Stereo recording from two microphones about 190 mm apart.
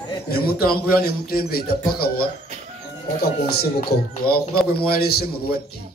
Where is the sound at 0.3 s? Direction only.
50° left (ahead or behind).